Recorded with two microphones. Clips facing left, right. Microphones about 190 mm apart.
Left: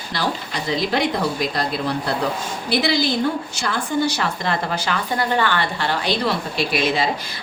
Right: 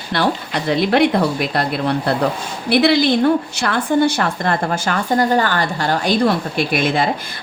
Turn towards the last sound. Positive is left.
turn(degrees=-55)  # may be behind; listen again after turning